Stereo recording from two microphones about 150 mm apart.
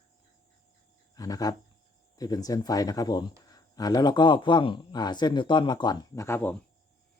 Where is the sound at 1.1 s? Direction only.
25° left (ahead or behind).